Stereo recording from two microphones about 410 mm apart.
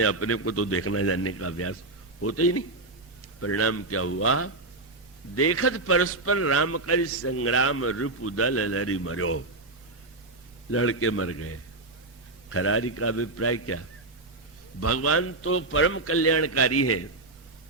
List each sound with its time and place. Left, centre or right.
0.0 s a man's voice: left
10.7 s a man's voice: left